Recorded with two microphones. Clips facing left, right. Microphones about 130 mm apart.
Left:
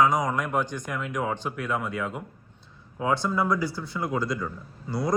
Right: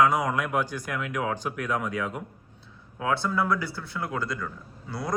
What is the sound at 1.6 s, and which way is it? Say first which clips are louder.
Speech: even; 5° left (ahead or behind).